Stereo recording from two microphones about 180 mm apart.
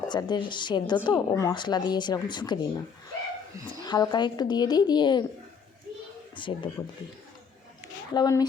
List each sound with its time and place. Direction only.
0.1 s a woman's voice: 25° left (ahead or behind)
3.8 s a woman's voice: 20° left (ahead or behind)
6.3 s a woman's voice: 25° left (ahead or behind)
8.1 s a woman's voice: 20° left (ahead or behind)